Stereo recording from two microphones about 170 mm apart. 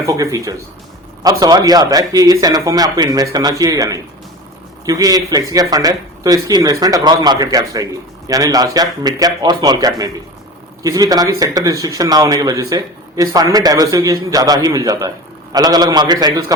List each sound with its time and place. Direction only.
0.0 s speech: 20° right (ahead or behind)